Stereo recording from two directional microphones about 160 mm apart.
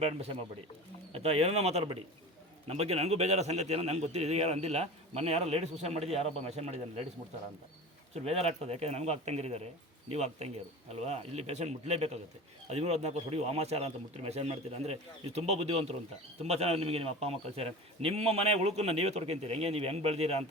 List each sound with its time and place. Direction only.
0.0 s a man's voice: 40° right (ahead or behind)
8.1 s a man's voice: 40° right (ahead or behind)